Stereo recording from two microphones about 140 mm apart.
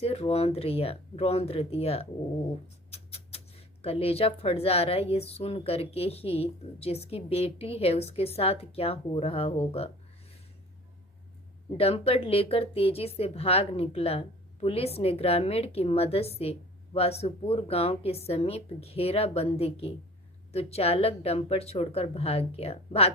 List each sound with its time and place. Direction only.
0.0 s speech: 45° left (ahead or behind)
11.8 s speech: 45° left (ahead or behind)